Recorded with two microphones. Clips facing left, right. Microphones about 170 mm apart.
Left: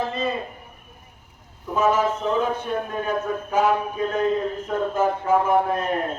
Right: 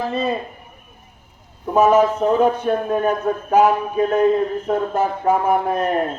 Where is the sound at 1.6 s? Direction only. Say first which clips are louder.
Right 6 dB; 60° right (ahead or behind).